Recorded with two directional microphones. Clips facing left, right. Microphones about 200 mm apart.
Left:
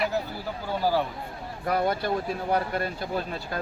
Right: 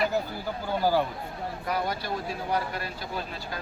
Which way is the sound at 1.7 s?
55° left (ahead or behind).